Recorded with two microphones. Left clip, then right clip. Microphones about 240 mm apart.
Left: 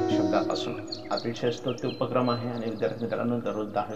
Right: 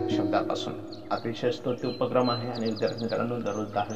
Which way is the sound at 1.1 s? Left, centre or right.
Centre.